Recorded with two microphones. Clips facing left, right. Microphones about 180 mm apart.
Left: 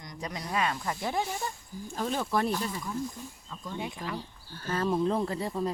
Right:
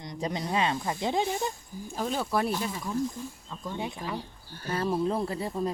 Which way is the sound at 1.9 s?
5° right (ahead or behind).